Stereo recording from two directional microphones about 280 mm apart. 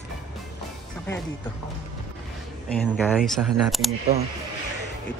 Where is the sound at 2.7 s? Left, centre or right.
Centre.